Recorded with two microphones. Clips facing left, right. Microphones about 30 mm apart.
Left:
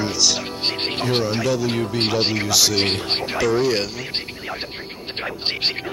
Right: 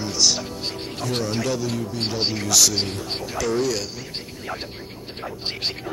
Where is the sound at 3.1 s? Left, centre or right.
Left.